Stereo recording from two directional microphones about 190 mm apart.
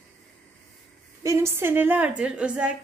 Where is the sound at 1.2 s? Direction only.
15° right (ahead or behind).